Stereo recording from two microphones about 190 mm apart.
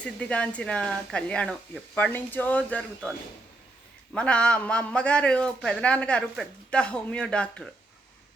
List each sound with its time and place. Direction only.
0.0 s a man's voice: 5° left (ahead or behind)
4.1 s a man's voice: 5° left (ahead or behind)